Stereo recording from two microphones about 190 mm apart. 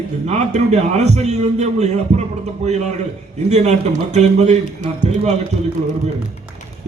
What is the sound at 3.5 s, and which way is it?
A man's voice, 35° right (ahead or behind).